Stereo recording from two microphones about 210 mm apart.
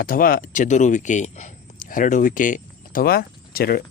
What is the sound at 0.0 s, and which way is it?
Speech, 40° left (ahead or behind).